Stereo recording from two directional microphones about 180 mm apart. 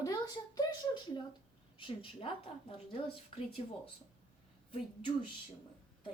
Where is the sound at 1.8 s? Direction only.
30° left (ahead or behind).